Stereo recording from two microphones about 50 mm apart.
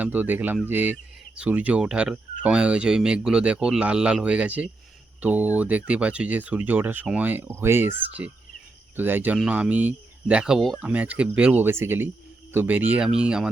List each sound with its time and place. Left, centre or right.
0.0 s speech: right
1.8 s speech: centre; by 7.4 s right
7.5 s speech: right
9.5 s speech: right
11.6 s speech: right
12.5 s speech: right
13.1 s speech: centre